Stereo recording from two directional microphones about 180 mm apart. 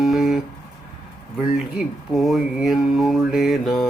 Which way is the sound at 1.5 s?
Centre (ahead or behind).